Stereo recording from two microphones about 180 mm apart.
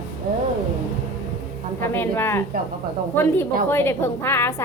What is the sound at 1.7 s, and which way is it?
A woman's voice, 10° left (ahead or behind).